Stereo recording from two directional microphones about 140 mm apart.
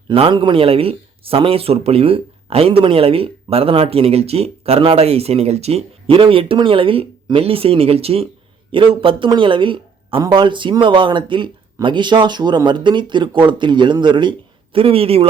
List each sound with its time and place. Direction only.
0.1 s a man's voice: 35° right (ahead or behind)